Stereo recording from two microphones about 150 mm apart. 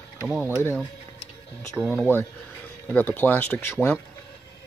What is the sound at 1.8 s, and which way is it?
Speech, centre (ahead or behind).